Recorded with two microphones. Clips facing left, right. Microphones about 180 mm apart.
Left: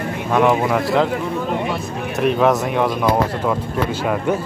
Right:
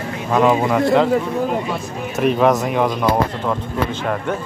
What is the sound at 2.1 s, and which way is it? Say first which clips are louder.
Speech: right 1 dB; centre (ahead or behind).